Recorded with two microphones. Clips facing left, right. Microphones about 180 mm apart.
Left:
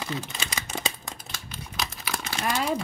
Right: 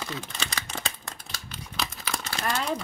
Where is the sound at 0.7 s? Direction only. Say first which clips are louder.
Left 3 dB; 10° left (ahead or behind).